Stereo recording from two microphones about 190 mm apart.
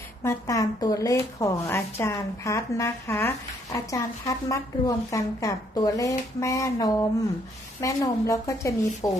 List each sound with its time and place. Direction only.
0.2 s speech: 15° left (ahead or behind)